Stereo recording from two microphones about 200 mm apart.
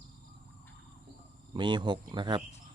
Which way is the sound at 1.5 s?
25° right (ahead or behind).